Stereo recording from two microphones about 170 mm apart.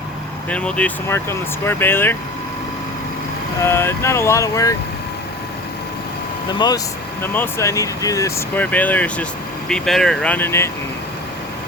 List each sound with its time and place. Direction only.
0.5 s speech: 5° left (ahead or behind)
3.6 s speech: 15° left (ahead or behind)
6.5 s speech: 25° left (ahead or behind)